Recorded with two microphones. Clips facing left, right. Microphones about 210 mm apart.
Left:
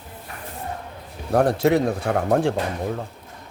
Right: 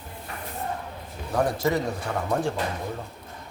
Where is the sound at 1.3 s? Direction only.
60° left (ahead or behind).